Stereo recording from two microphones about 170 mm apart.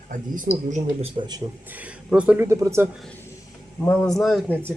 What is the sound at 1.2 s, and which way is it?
Speech, 25° right (ahead or behind).